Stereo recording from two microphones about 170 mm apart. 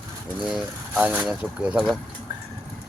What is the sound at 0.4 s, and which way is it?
Speech, 5° right (ahead or behind).